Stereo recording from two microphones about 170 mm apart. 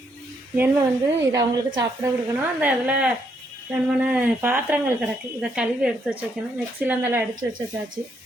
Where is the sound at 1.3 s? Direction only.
20° right (ahead or behind).